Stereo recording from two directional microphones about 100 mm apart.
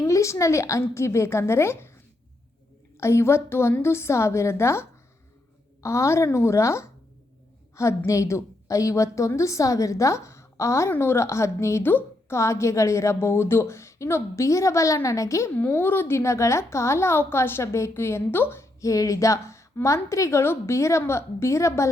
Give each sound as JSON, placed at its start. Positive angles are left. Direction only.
{"t": 0.0, "sound": "a woman's voice", "side_deg": 30}
{"t": 3.0, "sound": "a woman's voice", "side_deg": 25}
{"t": 15.5, "sound": "a woman's voice", "side_deg": 20}